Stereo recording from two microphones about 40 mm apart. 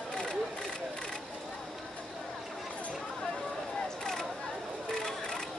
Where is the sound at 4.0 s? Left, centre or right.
Centre.